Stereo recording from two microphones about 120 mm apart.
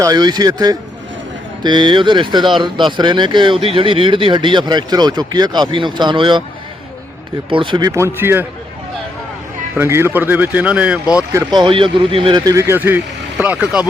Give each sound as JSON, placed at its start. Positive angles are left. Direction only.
{"t": 0.0, "sound": "speech", "side_deg": -35}
{"t": 7.5, "sound": "speech", "side_deg": -45}
{"t": 9.7, "sound": "speech", "side_deg": -20}
{"t": 11.5, "sound": "speech", "side_deg": -45}
{"t": 12.5, "sound": "speech", "side_deg": -25}